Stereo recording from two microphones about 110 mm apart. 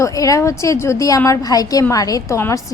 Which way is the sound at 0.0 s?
30° left (ahead or behind).